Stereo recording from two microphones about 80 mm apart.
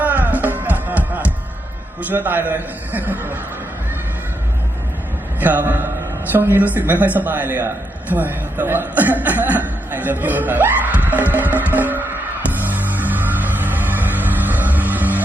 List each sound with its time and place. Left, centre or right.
0.0 s music: right
2.0 s a man's voice: right
5.4 s a man's voice: right
11.5 s music: right